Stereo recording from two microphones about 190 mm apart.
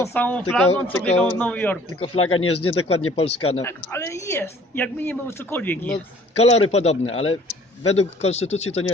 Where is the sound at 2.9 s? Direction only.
30° left (ahead or behind).